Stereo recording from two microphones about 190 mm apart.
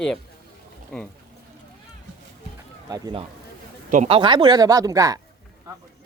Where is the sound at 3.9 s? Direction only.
30° right (ahead or behind).